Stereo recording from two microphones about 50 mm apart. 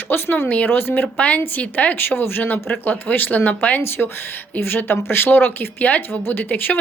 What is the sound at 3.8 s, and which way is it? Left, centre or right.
Speech, left.